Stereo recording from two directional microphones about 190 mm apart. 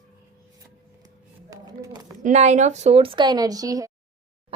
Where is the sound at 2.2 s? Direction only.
35° right (ahead or behind); by 3.9 s 20° right (ahead or behind).